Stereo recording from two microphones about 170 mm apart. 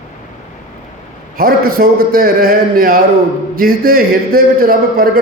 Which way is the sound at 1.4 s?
60° right (ahead or behind).